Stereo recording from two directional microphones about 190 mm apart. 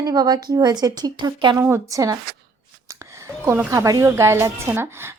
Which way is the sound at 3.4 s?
15° right (ahead or behind).